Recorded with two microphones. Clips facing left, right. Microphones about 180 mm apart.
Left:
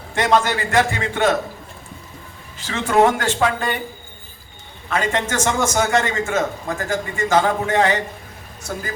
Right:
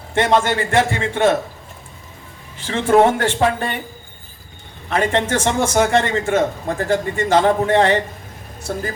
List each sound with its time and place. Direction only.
0.1 s a man's voice: 25° right (ahead or behind)
2.6 s a man's voice: 30° right (ahead or behind)
4.9 s a man's voice: 30° right (ahead or behind)